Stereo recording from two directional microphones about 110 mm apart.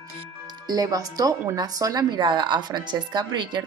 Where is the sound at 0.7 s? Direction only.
35° right (ahead or behind).